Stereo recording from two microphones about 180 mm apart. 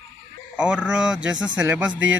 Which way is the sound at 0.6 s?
5° right (ahead or behind).